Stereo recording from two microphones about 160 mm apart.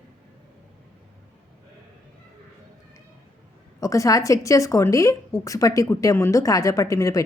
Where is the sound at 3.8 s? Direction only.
20° left (ahead or behind).